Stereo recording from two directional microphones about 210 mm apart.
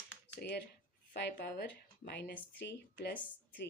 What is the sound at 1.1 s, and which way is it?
A woman's voice, 50° left (ahead or behind).